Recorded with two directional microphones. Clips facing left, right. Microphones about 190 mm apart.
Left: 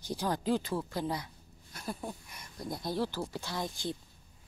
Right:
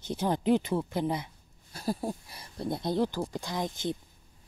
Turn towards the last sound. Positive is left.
turn(degrees=-20)  # may be behind; listen again after turning